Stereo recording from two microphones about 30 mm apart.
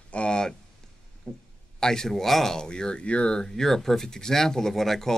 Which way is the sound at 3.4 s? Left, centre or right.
Centre.